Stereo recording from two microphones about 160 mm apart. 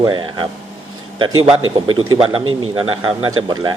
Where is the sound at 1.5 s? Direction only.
35° right (ahead or behind).